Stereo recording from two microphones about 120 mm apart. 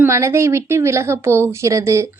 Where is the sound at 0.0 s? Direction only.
25° right (ahead or behind).